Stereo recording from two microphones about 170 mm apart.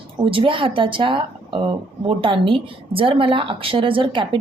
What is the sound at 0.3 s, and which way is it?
A woman's voice, 30° right (ahead or behind).